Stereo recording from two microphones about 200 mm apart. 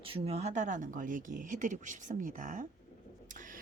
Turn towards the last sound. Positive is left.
turn(degrees=-40)  # may be behind; listen again after turning